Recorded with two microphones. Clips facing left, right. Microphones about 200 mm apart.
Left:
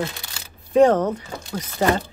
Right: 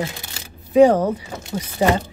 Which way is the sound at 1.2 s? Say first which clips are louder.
Right 2 dB; 15° right (ahead or behind).